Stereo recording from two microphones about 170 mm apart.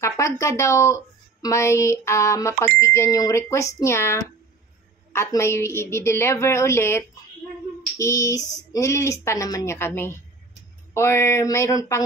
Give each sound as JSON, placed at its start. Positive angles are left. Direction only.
{"t": 0.0, "sound": "a woman's voice", "side_deg": 15}
{"t": 8.0, "sound": "a sound", "side_deg": 20}
{"t": 8.7, "sound": "a woman's voice", "side_deg": 15}